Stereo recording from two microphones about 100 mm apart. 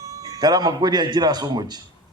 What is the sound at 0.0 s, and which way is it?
A man's voice, 35° right (ahead or behind).